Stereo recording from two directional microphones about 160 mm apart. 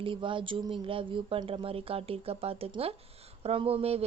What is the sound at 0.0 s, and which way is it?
A woman's voice, 30° right (ahead or behind).